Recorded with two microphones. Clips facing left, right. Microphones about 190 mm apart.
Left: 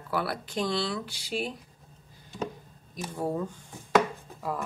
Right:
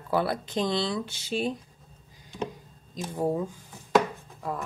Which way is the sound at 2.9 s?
15° right (ahead or behind).